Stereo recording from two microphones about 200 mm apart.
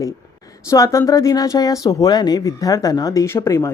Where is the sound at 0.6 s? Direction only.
15° left (ahead or behind).